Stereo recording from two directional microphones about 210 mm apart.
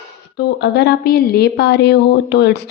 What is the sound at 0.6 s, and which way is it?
A woman's voice, 55° left (ahead or behind).